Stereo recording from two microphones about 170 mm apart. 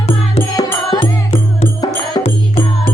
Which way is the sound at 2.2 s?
35° left (ahead or behind).